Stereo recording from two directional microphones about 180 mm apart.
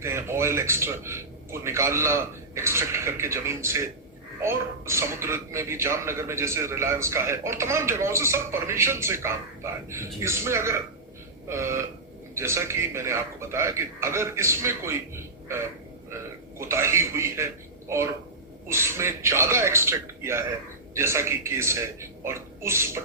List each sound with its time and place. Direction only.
0.0 s speech: 15° right (ahead or behind)